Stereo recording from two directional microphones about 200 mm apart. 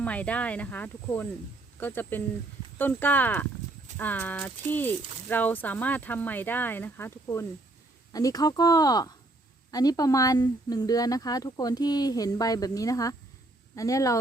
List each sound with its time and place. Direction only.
0.0 s speech: 5° left (ahead or behind)